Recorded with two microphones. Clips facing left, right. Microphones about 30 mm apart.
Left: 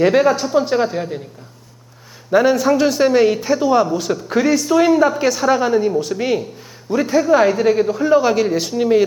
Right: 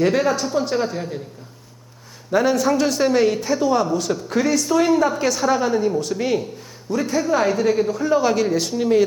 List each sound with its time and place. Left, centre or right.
0.0 s speech: centre
2.3 s speech: centre